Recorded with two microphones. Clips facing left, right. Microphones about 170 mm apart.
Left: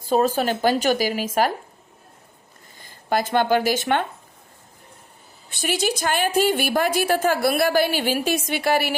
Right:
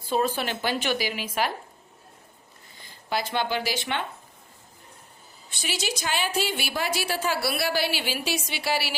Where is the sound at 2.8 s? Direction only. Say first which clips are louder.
Left 6 dB; 50° left (ahead or behind).